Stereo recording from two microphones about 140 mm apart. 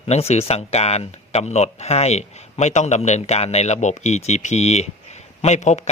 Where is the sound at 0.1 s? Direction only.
50° left (ahead or behind).